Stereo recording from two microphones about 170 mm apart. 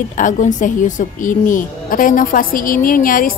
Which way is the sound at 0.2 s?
50° left (ahead or behind).